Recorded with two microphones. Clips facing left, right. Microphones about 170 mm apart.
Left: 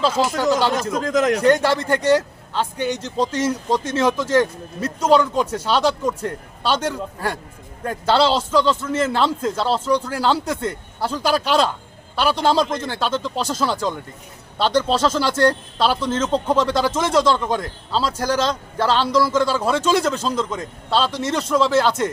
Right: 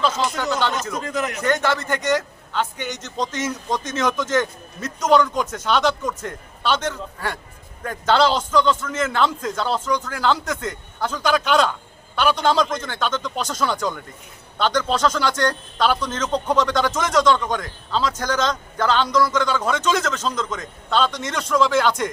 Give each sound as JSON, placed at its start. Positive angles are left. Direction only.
{"t": 0.2, "sound": "speech", "side_deg": 0}
{"t": 0.7, "sound": "speech", "side_deg": 90}
{"t": 1.4, "sound": "a man's voice", "side_deg": 35}
{"t": 7.9, "sound": "a man's voice", "side_deg": 30}